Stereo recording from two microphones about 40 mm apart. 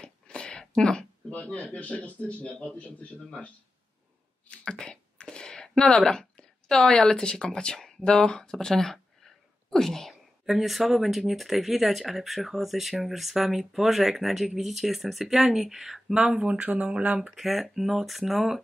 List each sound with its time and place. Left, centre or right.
0.0 s a sound: left
1.3 s a man's voice: left
4.5 s a sound: left
8.0 s speech: left
10.4 s speech: centre
16.3 s speech: right
17.4 s speech: centre